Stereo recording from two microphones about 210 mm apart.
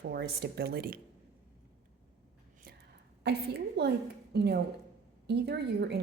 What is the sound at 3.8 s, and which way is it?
Speech, 50° right (ahead or behind).